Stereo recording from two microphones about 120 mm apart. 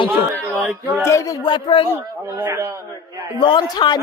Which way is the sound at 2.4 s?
25° right (ahead or behind).